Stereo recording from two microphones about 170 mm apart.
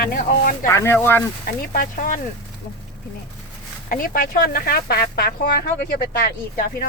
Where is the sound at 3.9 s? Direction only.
55° left (ahead or behind); by 6.3 s 70° left (ahead or behind).